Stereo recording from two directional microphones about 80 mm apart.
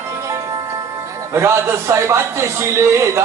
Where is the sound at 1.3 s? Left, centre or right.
Right.